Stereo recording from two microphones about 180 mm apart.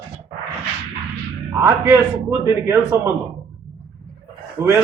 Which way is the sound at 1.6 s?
15° right (ahead or behind).